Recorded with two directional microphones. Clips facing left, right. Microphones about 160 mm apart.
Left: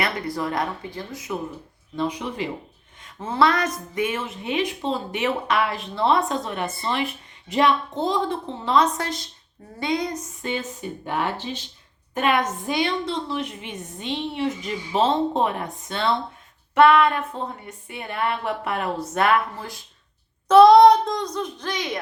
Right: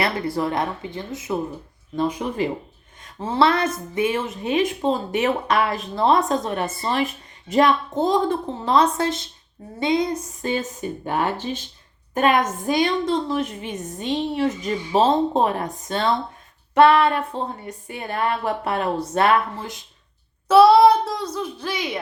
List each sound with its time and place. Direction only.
0.0 s speech: 25° right (ahead or behind)
2.0 s speech: 45° right (ahead or behind)
3.2 s a woman's voice: 30° right (ahead or behind)
10.4 s a woman's voice: 40° right (ahead or behind); by 19.8 s 25° right (ahead or behind)
20.5 s speech: 5° right (ahead or behind)